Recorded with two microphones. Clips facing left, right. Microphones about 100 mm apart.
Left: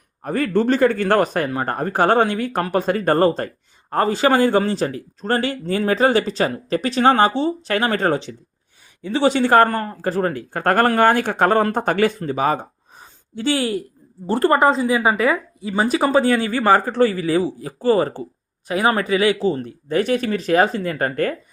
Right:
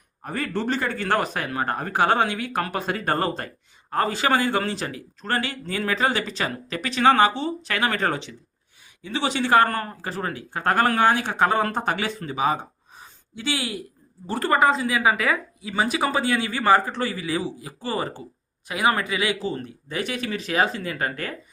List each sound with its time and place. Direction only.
0.3 s a man's voice: 45° left (ahead or behind)
9.6 s a man's voice: 30° left (ahead or behind)
10.0 s a man's voice: 45° left (ahead or behind)
14.3 s a man's voice: 30° left (ahead or behind)